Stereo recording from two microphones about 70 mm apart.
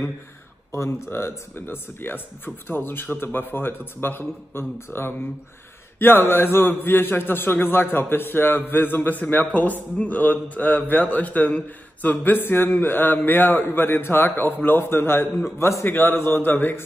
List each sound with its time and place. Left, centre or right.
0.7 s a man's voice: left